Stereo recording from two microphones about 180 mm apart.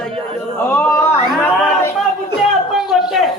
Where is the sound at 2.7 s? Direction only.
Centre (ahead or behind).